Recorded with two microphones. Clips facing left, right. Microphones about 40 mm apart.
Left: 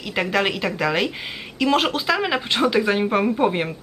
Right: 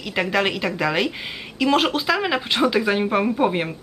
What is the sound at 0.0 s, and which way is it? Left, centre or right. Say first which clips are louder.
Speech: even; centre.